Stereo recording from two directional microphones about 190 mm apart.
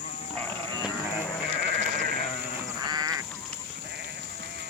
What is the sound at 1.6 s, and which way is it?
Sheep, 40° right (ahead or behind).